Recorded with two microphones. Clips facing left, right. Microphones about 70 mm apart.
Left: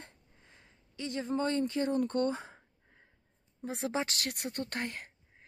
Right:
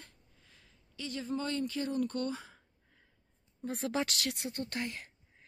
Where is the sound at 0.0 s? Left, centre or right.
Left.